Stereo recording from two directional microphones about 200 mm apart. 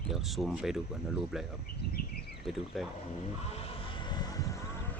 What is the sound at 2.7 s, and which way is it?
Speech, centre (ahead or behind).